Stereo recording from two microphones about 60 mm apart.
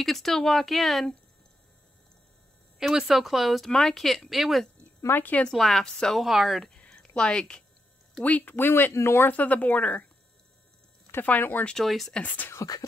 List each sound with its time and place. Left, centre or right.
0.0 s speech: centre
2.9 s speech: centre
5.0 s speech: left
5.5 s speech: centre
6.1 s speech: centre
6.9 s a sound: centre
8.2 s speech: left
8.5 s speech: left
9.3 s speech: left
11.2 s speech: left
11.8 s speech: centre
12.5 s speech: left